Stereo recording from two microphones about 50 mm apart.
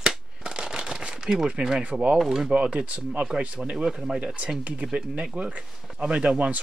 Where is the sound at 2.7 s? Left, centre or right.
Right.